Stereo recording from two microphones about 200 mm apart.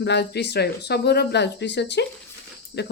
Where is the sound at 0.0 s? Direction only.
60° left (ahead or behind).